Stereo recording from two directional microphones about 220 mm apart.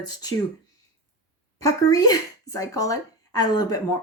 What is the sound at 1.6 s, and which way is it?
Speech, 15° left (ahead or behind).